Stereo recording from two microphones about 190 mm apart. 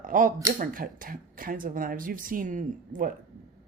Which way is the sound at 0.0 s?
45° right (ahead or behind).